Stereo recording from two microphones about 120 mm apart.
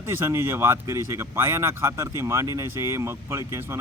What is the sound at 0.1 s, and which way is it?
Speech, 20° right (ahead or behind).